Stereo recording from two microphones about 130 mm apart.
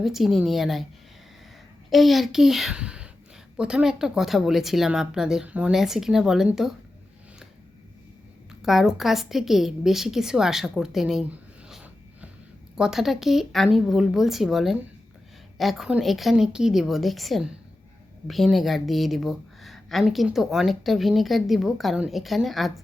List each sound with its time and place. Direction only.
0.0 s a woman's voice: centre (ahead or behind)
1.9 s a woman's voice: centre (ahead or behind)
8.6 s a woman's voice: 5° right (ahead or behind)